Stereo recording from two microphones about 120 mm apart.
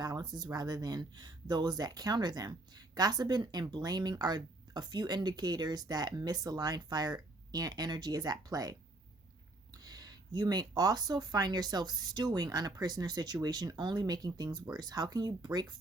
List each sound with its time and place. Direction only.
0.0 s speech: 35° right (ahead or behind)